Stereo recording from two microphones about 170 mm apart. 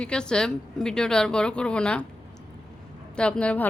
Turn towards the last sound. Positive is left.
turn(degrees=5)  # may be behind; listen again after turning